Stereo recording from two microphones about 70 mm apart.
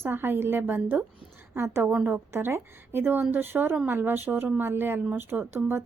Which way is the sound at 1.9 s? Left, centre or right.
Right.